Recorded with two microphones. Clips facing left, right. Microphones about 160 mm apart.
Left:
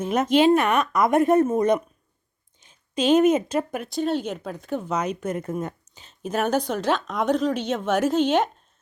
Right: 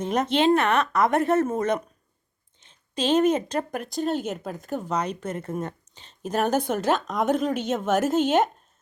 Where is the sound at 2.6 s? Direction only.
30° right (ahead or behind).